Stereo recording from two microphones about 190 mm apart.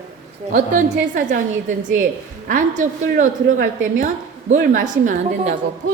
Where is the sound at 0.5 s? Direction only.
45° right (ahead or behind).